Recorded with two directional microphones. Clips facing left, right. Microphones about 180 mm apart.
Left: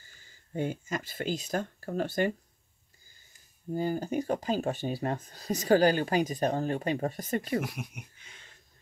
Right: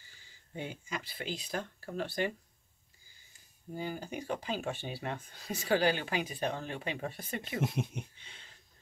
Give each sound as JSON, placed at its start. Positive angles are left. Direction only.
{"t": 0.0, "sound": "speech", "side_deg": 45}
{"t": 3.7, "sound": "speech", "side_deg": 45}
{"t": 7.6, "sound": "speech", "side_deg": -25}